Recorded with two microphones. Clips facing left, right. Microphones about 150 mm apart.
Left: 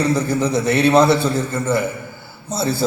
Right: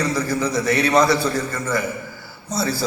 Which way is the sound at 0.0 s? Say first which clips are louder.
Left 3 dB; 25° left (ahead or behind).